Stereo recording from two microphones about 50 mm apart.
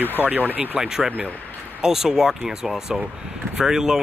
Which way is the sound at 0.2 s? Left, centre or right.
Centre.